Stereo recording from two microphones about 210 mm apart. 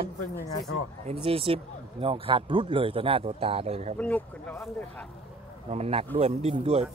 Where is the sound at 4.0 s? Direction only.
5° left (ahead or behind).